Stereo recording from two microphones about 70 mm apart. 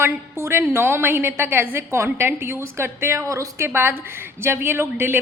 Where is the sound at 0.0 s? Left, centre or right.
Right.